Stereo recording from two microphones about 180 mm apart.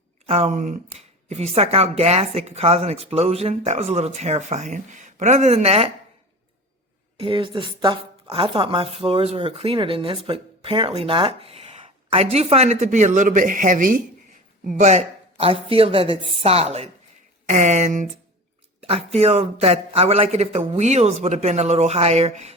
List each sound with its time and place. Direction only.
0.3 s speech: 35° right (ahead or behind)
7.2 s speech: 30° right (ahead or behind)